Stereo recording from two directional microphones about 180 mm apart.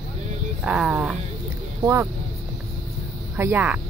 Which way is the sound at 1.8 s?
15° right (ahead or behind).